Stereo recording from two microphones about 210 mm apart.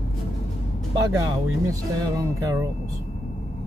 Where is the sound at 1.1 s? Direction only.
15° right (ahead or behind).